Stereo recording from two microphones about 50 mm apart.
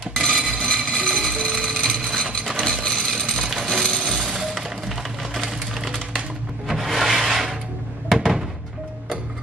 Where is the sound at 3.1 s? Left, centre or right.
Centre.